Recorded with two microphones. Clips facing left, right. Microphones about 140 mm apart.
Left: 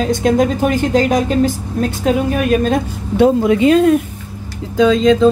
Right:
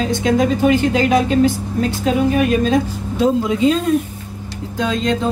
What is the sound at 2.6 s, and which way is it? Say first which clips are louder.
A woman's voice: even; 60° left (ahead or behind).